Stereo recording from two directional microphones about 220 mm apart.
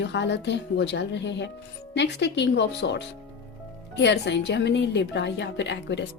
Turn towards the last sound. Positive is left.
turn(degrees=55)  # may be behind; listen again after turning